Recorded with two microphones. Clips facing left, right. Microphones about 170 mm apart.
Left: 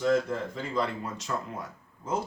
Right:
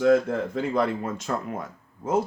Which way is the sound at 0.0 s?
60° right (ahead or behind).